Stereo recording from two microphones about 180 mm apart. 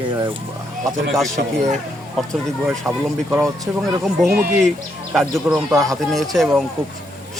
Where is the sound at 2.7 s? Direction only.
10° right (ahead or behind).